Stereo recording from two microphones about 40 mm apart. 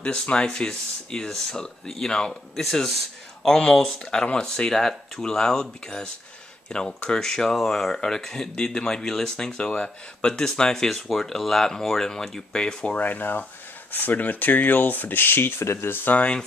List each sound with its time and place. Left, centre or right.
0.0 s speech: left; by 3.0 s centre
3.4 s speech: centre
9.6 s speech: left; by 12.6 s centre
12.9 s speech: left